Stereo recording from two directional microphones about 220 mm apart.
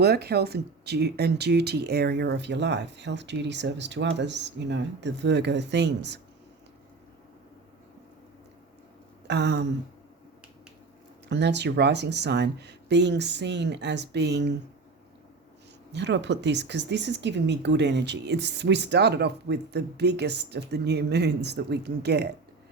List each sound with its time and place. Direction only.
0.0 s a woman's voice: 45° right (ahead or behind)
9.2 s speech: 50° right (ahead or behind)
11.3 s a woman's voice: 50° right (ahead or behind)
15.9 s a woman's voice: 55° right (ahead or behind)